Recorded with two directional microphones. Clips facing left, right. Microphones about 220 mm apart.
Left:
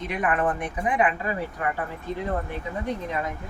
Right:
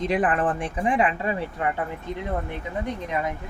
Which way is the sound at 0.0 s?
30° right (ahead or behind).